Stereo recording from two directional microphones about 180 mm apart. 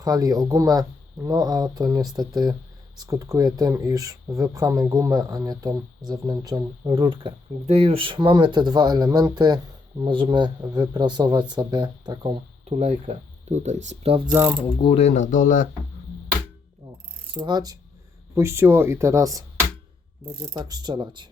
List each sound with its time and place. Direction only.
0.0 s speech: 20° right (ahead or behind)
12.7 s speech: 40° right (ahead or behind)
14.8 s speech: 30° left (ahead or behind)
17.3 s speech: 25° right (ahead or behind)